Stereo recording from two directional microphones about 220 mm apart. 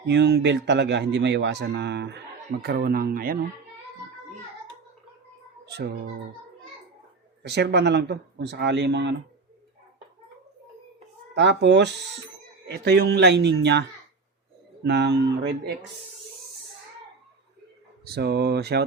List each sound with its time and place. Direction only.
0.0 s speech: 50° right (ahead or behind)
5.6 s a child's voice: 50° right (ahead or behind)
7.4 s speech: 50° right (ahead or behind)
11.3 s speech: 50° right (ahead or behind)
14.8 s speech: 50° right (ahead or behind)
18.0 s speech: 45° right (ahead or behind)